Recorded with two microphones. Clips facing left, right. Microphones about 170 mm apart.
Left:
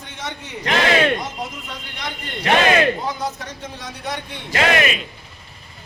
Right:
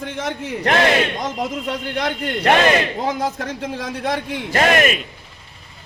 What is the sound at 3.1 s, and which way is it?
Speech, 90° right.